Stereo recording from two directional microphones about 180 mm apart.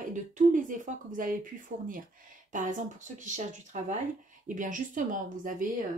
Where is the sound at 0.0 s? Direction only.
45° right (ahead or behind).